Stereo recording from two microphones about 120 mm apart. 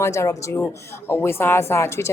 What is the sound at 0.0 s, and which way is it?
A woman's voice, 25° left (ahead or behind).